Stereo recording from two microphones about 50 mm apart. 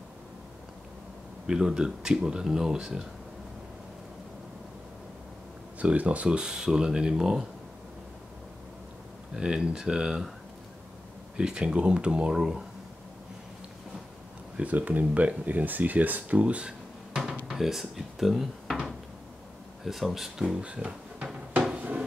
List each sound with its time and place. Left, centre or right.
1.5 s speech: centre
5.8 s speech: right; by 7.4 s centre
9.3 s speech: centre
11.3 s speech: centre
14.6 s speech: right
17.5 s speech: centre
19.8 s speech: centre
20.6 s speech: right
21.7 s a sound: right